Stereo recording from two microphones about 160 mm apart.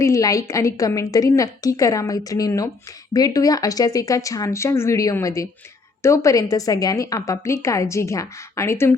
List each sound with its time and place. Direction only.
0.0 s a woman's voice: 20° left (ahead or behind)